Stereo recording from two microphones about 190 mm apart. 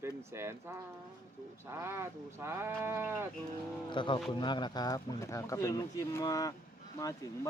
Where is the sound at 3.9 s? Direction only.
25° left (ahead or behind).